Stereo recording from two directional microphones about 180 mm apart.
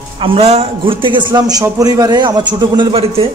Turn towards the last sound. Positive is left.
turn(degrees=-30)  # may be behind; listen again after turning